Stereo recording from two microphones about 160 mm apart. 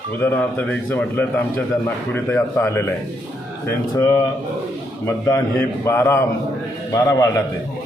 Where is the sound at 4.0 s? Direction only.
20° left (ahead or behind).